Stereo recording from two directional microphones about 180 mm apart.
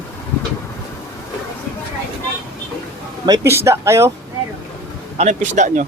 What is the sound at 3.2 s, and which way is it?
Speech, 15° right (ahead or behind).